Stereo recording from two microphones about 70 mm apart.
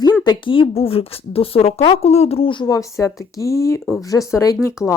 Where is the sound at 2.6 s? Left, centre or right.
Left.